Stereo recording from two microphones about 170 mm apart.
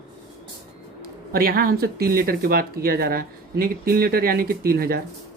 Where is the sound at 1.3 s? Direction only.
60° right (ahead or behind).